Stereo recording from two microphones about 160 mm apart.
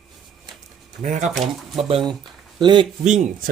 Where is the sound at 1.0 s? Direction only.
50° right (ahead or behind).